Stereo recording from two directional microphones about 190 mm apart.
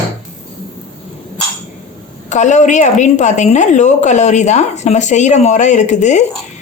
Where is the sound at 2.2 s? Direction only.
40° left (ahead or behind).